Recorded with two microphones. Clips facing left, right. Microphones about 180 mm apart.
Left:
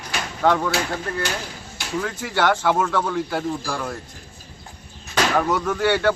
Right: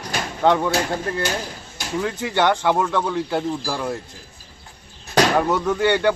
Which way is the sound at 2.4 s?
15° right (ahead or behind).